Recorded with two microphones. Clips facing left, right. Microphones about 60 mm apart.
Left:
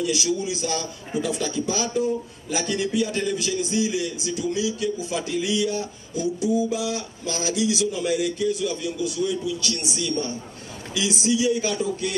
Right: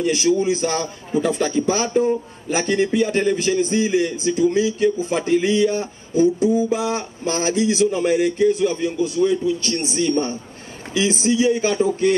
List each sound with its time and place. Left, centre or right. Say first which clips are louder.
0.0 s a man's voice: right 7 dB; right